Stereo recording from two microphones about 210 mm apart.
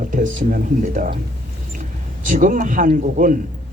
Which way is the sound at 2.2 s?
40° right (ahead or behind).